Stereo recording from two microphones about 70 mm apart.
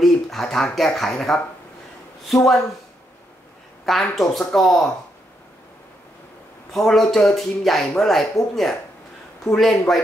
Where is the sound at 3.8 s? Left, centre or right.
Centre.